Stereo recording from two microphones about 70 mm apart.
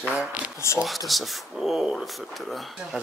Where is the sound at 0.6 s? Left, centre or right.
Left.